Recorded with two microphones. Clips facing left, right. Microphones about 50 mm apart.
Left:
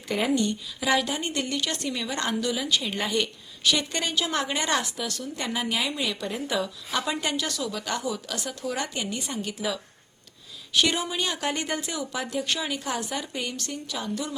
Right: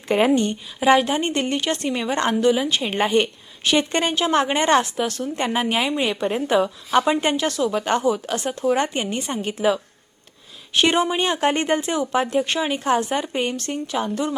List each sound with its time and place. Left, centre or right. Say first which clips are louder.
0.3 s a woman's voice: right 4 dB; right